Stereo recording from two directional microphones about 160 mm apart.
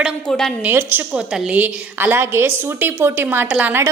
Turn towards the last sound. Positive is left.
turn(degrees=-10)  # may be behind; listen again after turning